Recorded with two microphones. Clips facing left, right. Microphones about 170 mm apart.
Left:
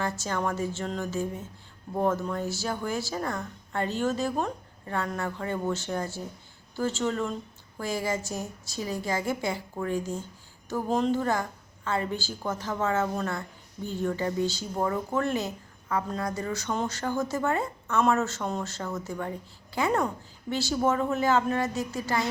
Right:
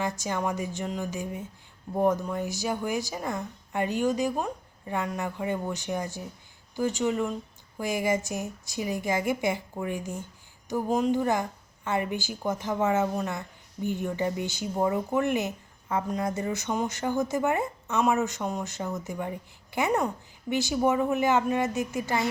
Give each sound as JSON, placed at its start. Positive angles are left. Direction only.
{"t": 0.0, "sound": "a woman's voice", "side_deg": -15}